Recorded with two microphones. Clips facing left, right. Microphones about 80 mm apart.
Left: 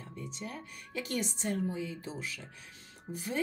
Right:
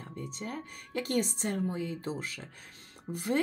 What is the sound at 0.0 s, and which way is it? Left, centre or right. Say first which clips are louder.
A woman's voice: right 3 dB; right.